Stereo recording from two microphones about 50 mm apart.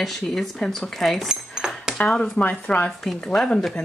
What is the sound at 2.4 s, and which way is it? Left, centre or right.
Speech, left.